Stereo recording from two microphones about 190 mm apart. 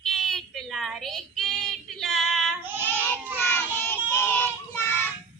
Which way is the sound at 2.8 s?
10° left (ahead or behind).